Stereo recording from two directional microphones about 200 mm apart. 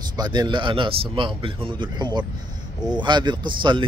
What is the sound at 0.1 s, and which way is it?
Speech, 20° right (ahead or behind).